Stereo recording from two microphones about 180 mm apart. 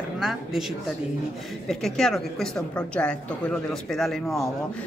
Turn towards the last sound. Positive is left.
turn(degrees=0)  # may be behind; listen again after turning